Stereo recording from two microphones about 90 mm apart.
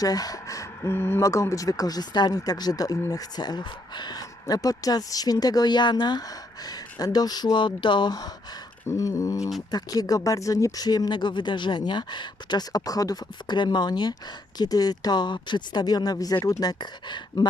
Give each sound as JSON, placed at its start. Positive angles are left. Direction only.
{"t": 0.0, "sound": "speech", "side_deg": 45}
{"t": 0.8, "sound": "speech", "side_deg": 25}
{"t": 8.9, "sound": "speech", "side_deg": 35}